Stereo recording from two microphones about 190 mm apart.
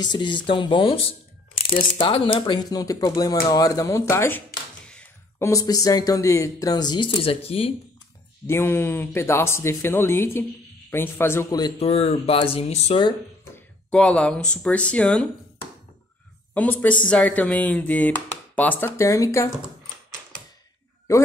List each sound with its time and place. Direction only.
0.0 s speech: 25° left (ahead or behind)
4.8 s a sound: 5° left (ahead or behind)
5.5 s speech: 20° left (ahead or behind)
8.5 s speech: 10° left (ahead or behind)
11.8 s speech: 30° left (ahead or behind)
13.8 s speech: 5° left (ahead or behind)
16.5 s speech: 10° left (ahead or behind)